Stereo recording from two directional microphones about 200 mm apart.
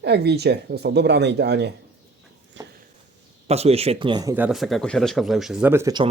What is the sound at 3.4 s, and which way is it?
Speech, 30° right (ahead or behind).